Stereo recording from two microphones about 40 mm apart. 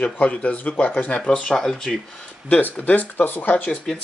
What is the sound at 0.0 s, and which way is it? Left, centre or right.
Speech, left.